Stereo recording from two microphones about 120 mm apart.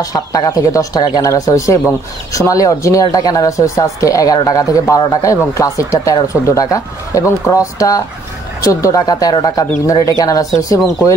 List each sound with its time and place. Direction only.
0.0 s speech: 30° left (ahead or behind)